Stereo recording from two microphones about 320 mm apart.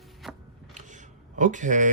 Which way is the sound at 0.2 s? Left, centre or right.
Centre.